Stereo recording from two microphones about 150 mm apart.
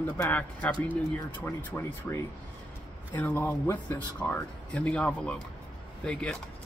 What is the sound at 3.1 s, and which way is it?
Speech, 10° left (ahead or behind).